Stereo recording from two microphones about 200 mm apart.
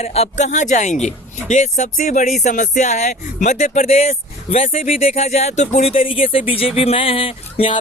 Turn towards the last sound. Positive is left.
turn(degrees=30)  # may be behind; listen again after turning